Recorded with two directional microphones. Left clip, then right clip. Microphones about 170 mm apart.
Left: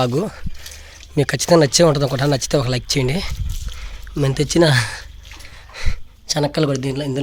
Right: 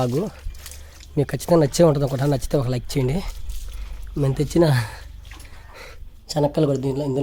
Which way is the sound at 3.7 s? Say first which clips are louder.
Left 3 dB; centre (ahead or behind).